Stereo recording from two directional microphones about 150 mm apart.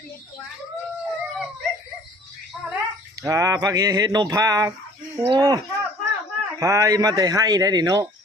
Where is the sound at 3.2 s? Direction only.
20° right (ahead or behind).